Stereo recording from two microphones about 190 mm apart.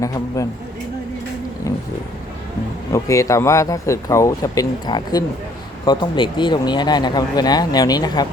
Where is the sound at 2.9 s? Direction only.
15° left (ahead or behind).